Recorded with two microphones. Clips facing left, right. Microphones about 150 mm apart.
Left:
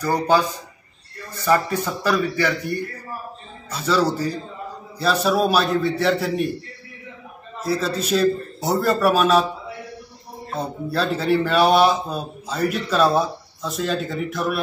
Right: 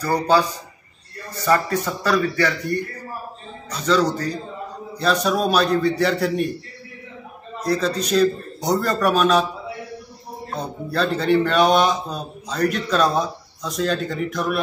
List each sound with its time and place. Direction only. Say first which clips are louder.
0.0 s a man's voice: even; 20° left (ahead or behind)
1.4 s a man's voice: even; 10° left (ahead or behind)
7.6 s a man's voice: right 1 dB; 5° left (ahead or behind)
10.5 s a man's voice: left 2 dB; 5° left (ahead or behind)